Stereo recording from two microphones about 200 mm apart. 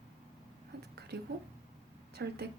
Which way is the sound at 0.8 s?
55° right (ahead or behind).